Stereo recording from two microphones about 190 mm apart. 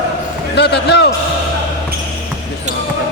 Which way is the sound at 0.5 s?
60° left (ahead or behind).